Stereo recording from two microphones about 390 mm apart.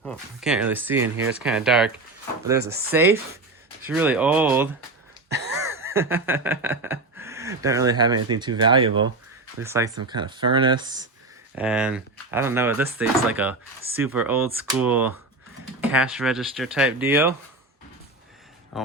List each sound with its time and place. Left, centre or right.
0.0 s speech: centre
1.1 s speech: right
1.5 s speech: centre
2.9 s speech: centre
5.8 s speech: centre
18.7 s a sound: centre